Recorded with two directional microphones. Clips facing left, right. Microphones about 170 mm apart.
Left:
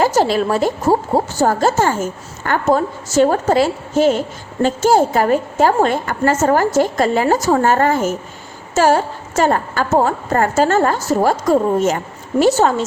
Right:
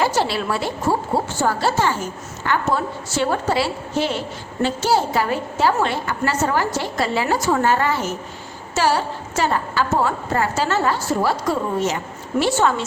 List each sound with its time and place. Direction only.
0.0 s a woman's voice: 45° left (ahead or behind)